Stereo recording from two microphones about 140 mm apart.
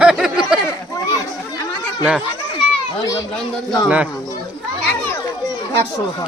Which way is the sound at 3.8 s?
10° right (ahead or behind).